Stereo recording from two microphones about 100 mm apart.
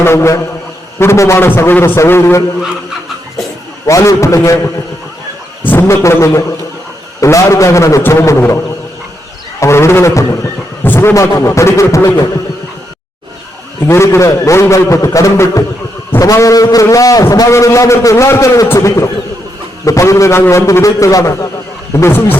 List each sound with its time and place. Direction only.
0.0 s a man's voice: 25° left (ahead or behind)
3.8 s a man's voice: 30° left (ahead or behind)
11.1 s a man's voice: 30° left (ahead or behind)
13.8 s a man's voice: 25° left (ahead or behind)
22.0 s a man's voice: 25° left (ahead or behind)